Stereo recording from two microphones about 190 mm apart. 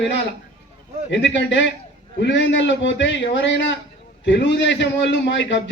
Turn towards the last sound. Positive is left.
turn(degrees=75)  # may be behind; listen again after turning